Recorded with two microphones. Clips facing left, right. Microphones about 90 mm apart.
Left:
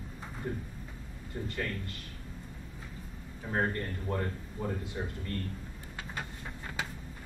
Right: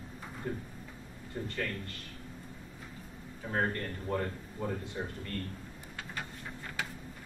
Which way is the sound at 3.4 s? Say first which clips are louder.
Left 1 dB; 10° left (ahead or behind).